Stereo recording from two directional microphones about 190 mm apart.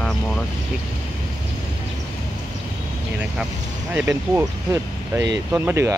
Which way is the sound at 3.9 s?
10° right (ahead or behind).